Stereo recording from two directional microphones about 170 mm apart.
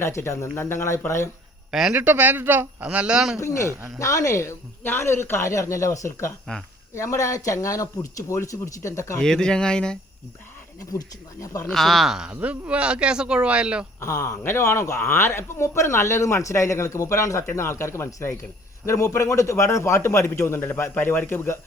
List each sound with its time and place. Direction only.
0.0 s a man's voice: 15° left (ahead or behind)
1.7 s a man's voice: 5° right (ahead or behind)
3.3 s a man's voice: 15° left (ahead or behind)
3.7 s a man's voice: 15° right (ahead or behind)
3.9 s a man's voice: 20° left (ahead or behind)
9.2 s speech: 5° left (ahead or behind)
10.9 s speech: 20° left (ahead or behind)
11.6 s speech: centre (ahead or behind)
14.0 s a man's voice: 15° left (ahead or behind)